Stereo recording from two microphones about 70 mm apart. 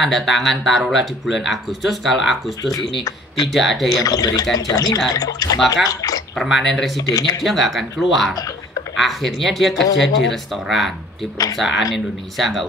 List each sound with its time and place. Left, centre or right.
0.0 s speech: centre
3.0 s speech: left
3.4 s speech: centre
4.0 s speech: left
6.3 s speech: centre
7.1 s speech: left
7.4 s speech: centre